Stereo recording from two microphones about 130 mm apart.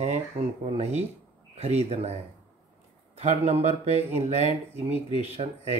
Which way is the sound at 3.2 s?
55° right (ahead or behind).